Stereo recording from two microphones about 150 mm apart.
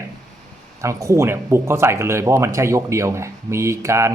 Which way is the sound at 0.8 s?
20° right (ahead or behind).